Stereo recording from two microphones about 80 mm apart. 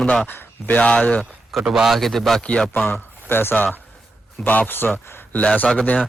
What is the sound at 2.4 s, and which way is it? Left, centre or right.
Speech, centre.